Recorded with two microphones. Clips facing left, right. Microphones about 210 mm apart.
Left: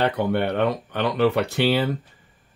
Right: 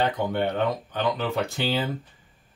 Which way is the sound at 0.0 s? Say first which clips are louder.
Left 3 dB; 65° left (ahead or behind).